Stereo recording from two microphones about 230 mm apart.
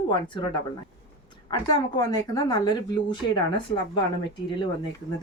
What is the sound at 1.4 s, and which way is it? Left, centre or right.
Speech, centre.